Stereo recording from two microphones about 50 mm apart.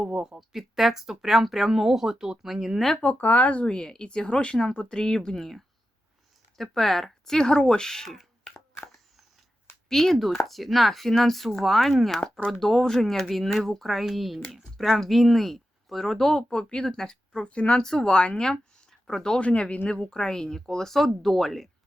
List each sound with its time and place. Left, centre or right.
0.0 s speech: centre
0.3 s speech: centre
3.0 s speech: left
3.7 s speech: centre
9.9 s speech: centre
16.5 s speech: centre
17.4 s speech: left
18.9 s a sound: centre
19.4 s speech: left; by 21.7 s centre